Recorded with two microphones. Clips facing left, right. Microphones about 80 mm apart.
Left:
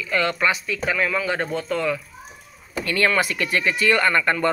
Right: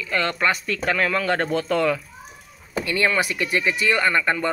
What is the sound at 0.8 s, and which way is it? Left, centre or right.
Speech, right.